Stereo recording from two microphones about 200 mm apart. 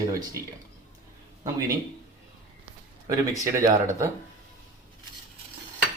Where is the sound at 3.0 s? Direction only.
15° right (ahead or behind).